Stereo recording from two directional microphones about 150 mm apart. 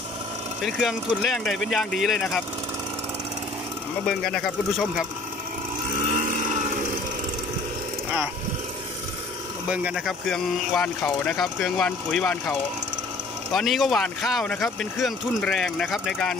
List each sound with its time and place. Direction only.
0.7 s speech: centre (ahead or behind)
4.2 s speech: centre (ahead or behind)
5.9 s a sound: 55° right (ahead or behind)
9.7 s speech: 5° right (ahead or behind)